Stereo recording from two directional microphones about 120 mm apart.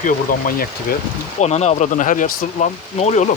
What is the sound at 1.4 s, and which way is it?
Speech, 65° left (ahead or behind).